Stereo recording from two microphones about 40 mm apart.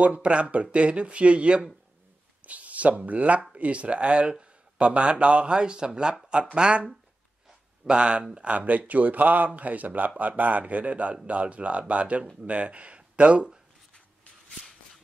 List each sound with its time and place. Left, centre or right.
0.0 s a man's voice: right